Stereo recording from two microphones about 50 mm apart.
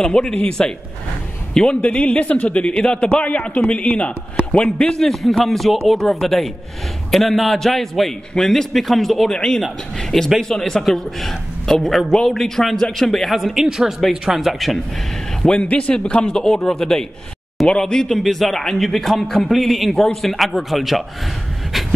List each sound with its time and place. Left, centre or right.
0.0 s a man's voice: centre
1.8 s a man's voice: left
5.0 s a man's voice: centre
15.4 s a man's voice: centre